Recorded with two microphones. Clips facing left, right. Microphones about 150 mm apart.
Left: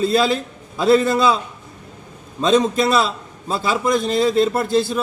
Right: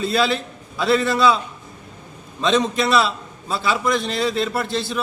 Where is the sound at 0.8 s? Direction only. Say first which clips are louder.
Left 3 dB; 40° left (ahead or behind).